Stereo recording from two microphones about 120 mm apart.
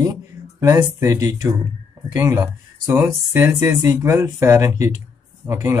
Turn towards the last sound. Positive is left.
turn(degrees=-20)  # may be behind; listen again after turning